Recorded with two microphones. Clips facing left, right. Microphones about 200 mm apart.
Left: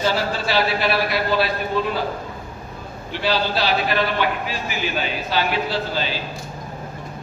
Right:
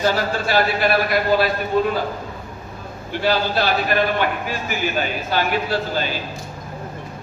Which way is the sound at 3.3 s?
50° right (ahead or behind).